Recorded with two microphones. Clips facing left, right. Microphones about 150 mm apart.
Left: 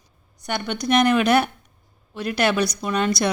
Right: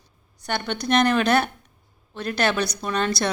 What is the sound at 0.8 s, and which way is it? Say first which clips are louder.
Speech: left 2 dB; 10° left (ahead or behind).